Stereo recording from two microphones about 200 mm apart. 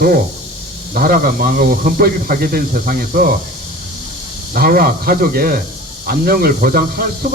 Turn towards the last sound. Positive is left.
turn(degrees=-45)  # may be behind; listen again after turning